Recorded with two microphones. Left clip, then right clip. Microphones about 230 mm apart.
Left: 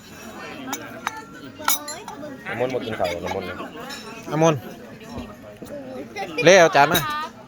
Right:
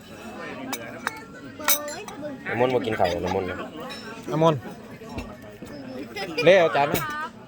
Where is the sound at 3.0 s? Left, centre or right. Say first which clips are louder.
Right 1 dB; centre.